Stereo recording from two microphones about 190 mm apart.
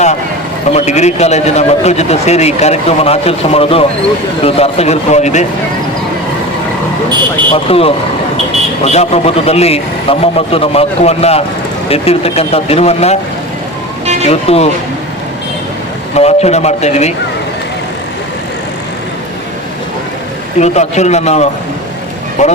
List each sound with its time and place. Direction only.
0.7 s a man's voice: 35° left (ahead or behind)
7.5 s a man's voice: 30° left (ahead or behind)
14.3 s a man's voice: 30° left (ahead or behind)
16.1 s a man's voice: 35° left (ahead or behind)
20.6 s a man's voice: 35° left (ahead or behind)